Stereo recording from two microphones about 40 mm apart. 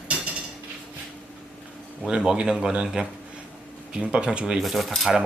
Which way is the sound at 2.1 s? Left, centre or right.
Right.